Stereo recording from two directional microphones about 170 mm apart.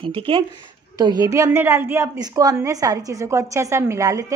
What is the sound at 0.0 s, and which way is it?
A woman's voice, 30° right (ahead or behind).